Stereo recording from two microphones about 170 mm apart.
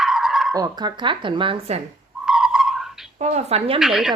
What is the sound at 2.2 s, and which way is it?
Whistle, 5° right (ahead or behind).